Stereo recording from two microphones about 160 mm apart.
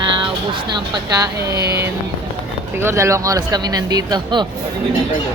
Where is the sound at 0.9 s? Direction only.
20° right (ahead or behind).